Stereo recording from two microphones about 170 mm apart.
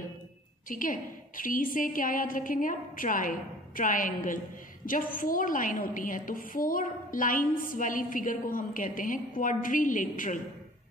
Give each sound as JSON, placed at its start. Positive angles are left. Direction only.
{"t": 0.7, "sound": "a woman's voice", "side_deg": 55}